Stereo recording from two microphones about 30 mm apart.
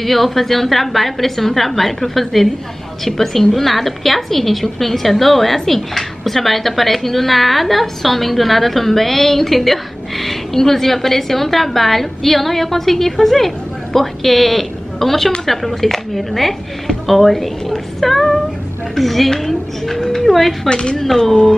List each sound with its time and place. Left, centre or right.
0.0 s a woman's voice: centre
20.6 s speech: left